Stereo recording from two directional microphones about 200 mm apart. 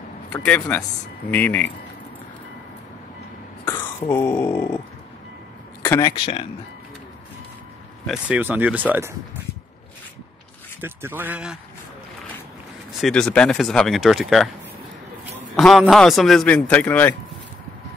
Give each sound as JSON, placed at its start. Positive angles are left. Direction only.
{"t": 0.5, "sound": "speech", "side_deg": 5}
{"t": 3.6, "sound": "speech", "side_deg": 10}
{"t": 5.9, "sound": "speech", "side_deg": 20}
{"t": 8.1, "sound": "speech", "side_deg": -10}
{"t": 10.8, "sound": "speech", "side_deg": -10}
{"t": 13.0, "sound": "speech", "side_deg": 5}
{"t": 15.5, "sound": "a man's voice", "side_deg": 5}